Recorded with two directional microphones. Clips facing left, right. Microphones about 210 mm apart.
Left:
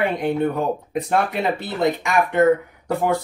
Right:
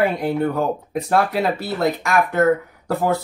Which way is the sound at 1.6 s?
5° right (ahead or behind).